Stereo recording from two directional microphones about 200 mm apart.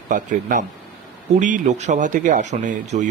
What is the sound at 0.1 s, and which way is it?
Speech, 40° right (ahead or behind).